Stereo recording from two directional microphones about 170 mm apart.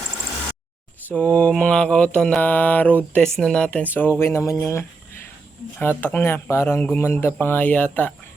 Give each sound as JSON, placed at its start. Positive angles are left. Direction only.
{"t": 1.0, "sound": "mantra", "side_deg": 10}
{"t": 6.0, "sound": "mantra", "side_deg": 10}